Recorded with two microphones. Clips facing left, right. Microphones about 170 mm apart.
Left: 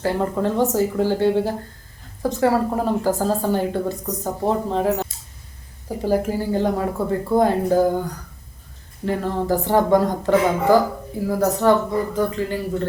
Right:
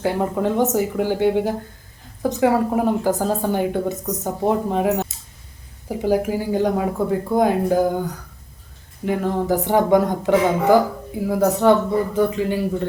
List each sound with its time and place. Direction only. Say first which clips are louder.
0.0 s speech: right 1 dB; 15° right (ahead or behind)
4.0 s a woman's voice: right 1 dB; 5° right (ahead or behind)